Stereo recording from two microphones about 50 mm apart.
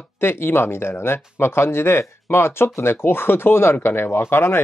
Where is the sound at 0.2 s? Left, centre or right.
Left.